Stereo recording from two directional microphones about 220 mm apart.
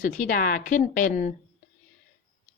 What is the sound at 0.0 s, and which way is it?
Speech, 35° left (ahead or behind).